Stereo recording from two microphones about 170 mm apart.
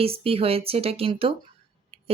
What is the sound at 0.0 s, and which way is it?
Speech, 35° right (ahead or behind).